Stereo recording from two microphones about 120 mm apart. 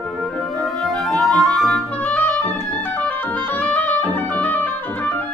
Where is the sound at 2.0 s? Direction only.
15° left (ahead or behind).